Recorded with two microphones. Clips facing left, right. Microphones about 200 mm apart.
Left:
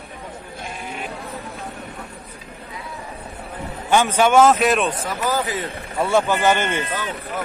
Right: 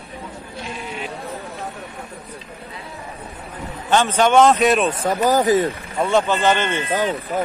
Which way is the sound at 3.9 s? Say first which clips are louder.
Even; 10° left (ahead or behind).